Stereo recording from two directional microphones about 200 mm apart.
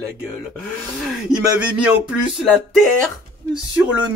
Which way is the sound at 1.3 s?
5° right (ahead or behind).